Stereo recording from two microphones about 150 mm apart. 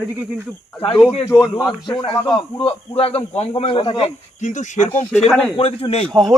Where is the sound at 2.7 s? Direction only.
40° left (ahead or behind).